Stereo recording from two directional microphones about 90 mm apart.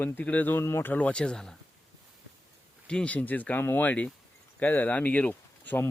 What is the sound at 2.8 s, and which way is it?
Speech, 10° left (ahead or behind).